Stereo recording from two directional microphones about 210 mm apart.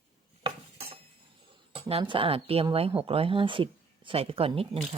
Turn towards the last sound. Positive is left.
turn(degrees=-25)  # may be behind; listen again after turning